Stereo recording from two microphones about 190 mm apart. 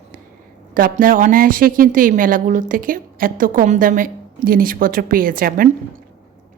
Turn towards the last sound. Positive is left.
turn(degrees=-50)  # may be behind; listen again after turning